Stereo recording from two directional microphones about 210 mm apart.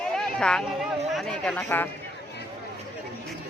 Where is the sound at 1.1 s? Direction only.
5° left (ahead or behind).